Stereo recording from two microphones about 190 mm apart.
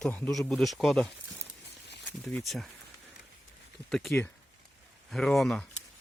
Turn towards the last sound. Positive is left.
turn(degrees=0)  # may be behind; listen again after turning